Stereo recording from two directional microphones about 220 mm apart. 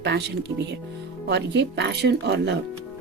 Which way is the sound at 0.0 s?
50° right (ahead or behind).